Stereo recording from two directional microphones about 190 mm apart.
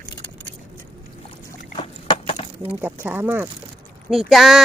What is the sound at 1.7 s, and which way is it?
Rowboat, 30° left (ahead or behind).